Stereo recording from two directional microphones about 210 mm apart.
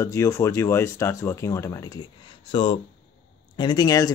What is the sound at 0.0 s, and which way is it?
Speech, 15° left (ahead or behind).